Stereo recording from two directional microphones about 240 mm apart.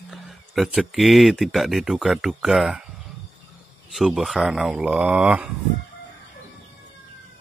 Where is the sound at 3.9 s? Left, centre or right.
Centre.